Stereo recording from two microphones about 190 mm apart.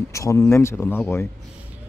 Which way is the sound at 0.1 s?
15° left (ahead or behind).